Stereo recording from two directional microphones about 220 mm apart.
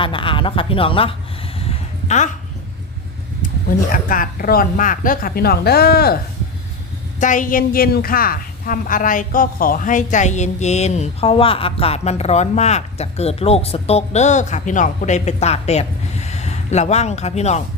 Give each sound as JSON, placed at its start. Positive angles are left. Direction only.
{"t": 0.0, "sound": "speech", "side_deg": 25}
{"t": 1.5, "sound": "a sound", "side_deg": 30}
{"t": 3.7, "sound": "a woman's voice", "side_deg": 40}
{"t": 7.2, "sound": "a woman's voice", "side_deg": 35}